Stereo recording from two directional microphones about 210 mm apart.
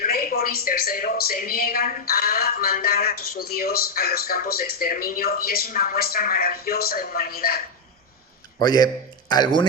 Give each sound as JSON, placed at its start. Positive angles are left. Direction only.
{"t": 0.0, "sound": "speech", "side_deg": 45}
{"t": 8.6, "sound": "speech", "side_deg": 20}